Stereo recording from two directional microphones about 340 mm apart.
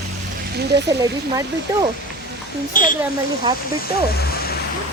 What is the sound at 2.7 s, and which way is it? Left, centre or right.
Speech, left.